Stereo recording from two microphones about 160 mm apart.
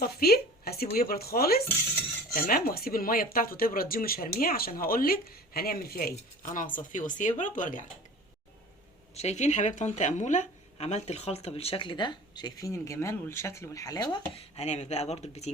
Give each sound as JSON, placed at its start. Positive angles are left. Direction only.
{"t": 0.0, "sound": "a sound", "side_deg": 75}
{"t": 0.9, "sound": "speech", "side_deg": 70}
{"t": 9.1, "sound": "speech", "side_deg": 45}
{"t": 14.5, "sound": "speech", "side_deg": 45}